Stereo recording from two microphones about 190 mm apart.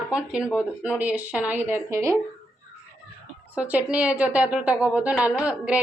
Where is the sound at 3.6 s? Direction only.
5° right (ahead or behind).